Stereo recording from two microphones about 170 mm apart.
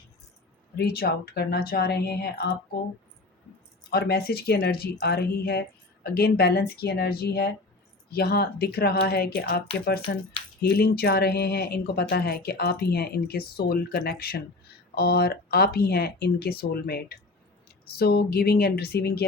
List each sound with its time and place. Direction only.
0.8 s speech: 65° left (ahead or behind)
3.8 s speech: 65° left (ahead or behind)